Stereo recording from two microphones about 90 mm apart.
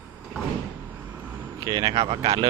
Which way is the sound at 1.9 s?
90° right.